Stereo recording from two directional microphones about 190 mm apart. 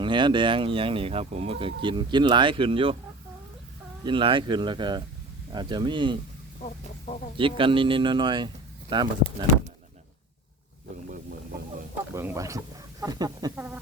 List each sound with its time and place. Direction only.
0.0 s speech: 25° right (ahead or behind)
4.0 s speech: 25° right (ahead or behind)
6.6 s speech: 40° left (ahead or behind)
7.3 s speech: 25° right (ahead or behind)
12.1 s speech: 15° right (ahead or behind)